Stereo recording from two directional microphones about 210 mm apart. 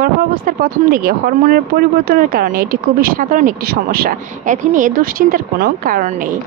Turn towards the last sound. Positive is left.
turn(degrees=-40)  # may be behind; listen again after turning